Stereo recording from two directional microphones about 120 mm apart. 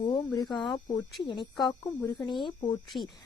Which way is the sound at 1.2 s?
40° left (ahead or behind).